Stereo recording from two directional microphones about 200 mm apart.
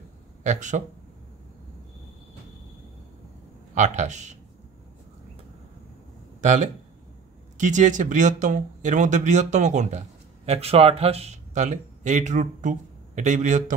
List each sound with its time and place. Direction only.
0.4 s speech: 35° right (ahead or behind)
3.7 s speech: 35° right (ahead or behind)
6.4 s speech: 35° right (ahead or behind)